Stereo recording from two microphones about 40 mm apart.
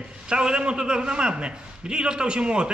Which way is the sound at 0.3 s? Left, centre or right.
Right.